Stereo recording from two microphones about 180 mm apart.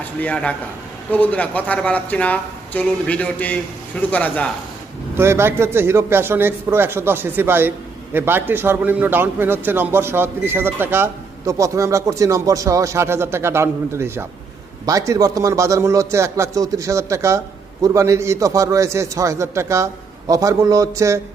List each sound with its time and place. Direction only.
0.0 s a man's voice: 10° left (ahead or behind)
5.1 s a man's voice: 15° right (ahead or behind)